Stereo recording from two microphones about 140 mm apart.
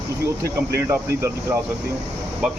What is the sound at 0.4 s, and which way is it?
Speech, 20° right (ahead or behind).